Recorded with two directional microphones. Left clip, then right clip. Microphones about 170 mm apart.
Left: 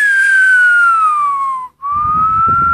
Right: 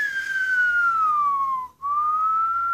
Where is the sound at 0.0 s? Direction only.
15° left (ahead or behind).